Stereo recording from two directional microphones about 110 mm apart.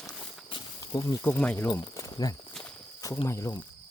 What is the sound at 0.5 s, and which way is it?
Insect, 50° left (ahead or behind).